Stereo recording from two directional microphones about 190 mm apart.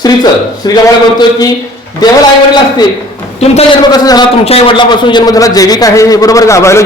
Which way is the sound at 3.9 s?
20° left (ahead or behind).